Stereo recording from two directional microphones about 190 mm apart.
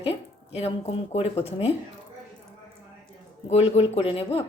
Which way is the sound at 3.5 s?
35° left (ahead or behind).